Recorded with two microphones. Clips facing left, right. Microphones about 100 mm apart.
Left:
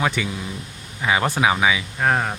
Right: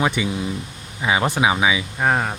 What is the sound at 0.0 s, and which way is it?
Speech, 10° right (ahead or behind).